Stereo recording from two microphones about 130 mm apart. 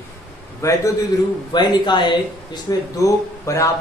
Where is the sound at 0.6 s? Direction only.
25° left (ahead or behind).